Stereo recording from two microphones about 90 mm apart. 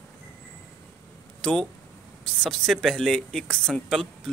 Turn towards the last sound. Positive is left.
turn(degrees=5)  # may be behind; listen again after turning